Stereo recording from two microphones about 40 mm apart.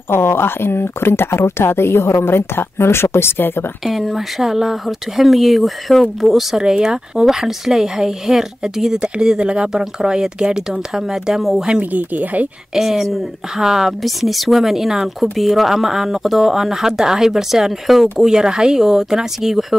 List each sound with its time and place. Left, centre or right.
0.1 s speech: left
3.8 s speech: centre
6.5 s speech: centre
11.8 s speech: right
12.7 s speech: centre
14.0 s speech: centre